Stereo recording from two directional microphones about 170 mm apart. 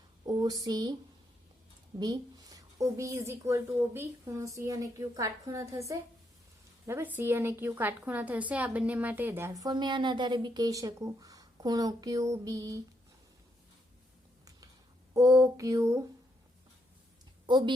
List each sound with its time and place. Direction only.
0.3 s a woman's voice: 20° right (ahead or behind)
2.0 s a woman's voice: 20° right (ahead or behind)
15.1 s a woman's voice: 20° right (ahead or behind)
17.4 s a woman's voice: 25° right (ahead or behind)